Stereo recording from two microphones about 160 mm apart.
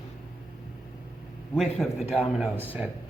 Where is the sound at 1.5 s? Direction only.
Centre (ahead or behind).